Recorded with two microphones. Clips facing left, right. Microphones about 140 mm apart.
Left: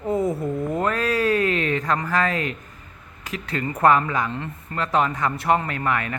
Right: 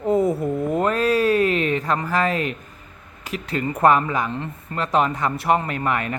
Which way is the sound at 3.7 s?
20° right (ahead or behind).